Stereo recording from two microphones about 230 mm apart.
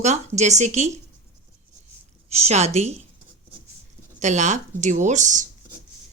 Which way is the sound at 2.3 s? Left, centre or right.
Right.